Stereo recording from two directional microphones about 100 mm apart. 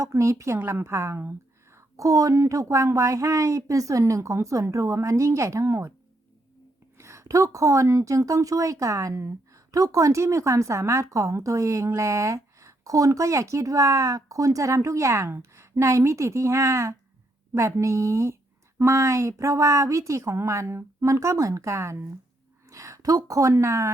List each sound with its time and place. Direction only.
0.0 s a woman's voice: 30° right (ahead or behind)
2.0 s a woman's voice: 35° right (ahead or behind)
7.0 s a woman's voice: 30° right (ahead or behind)